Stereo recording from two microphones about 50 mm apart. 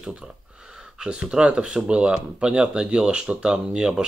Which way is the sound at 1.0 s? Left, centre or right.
Centre.